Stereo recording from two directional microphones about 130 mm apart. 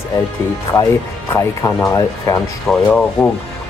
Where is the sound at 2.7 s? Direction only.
10° left (ahead or behind).